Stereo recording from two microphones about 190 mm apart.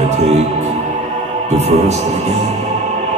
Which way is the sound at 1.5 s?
35° right (ahead or behind).